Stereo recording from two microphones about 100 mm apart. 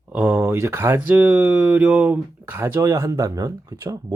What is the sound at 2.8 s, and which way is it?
Speech, 30° right (ahead or behind).